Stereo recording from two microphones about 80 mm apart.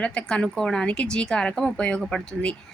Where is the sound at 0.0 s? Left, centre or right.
Centre.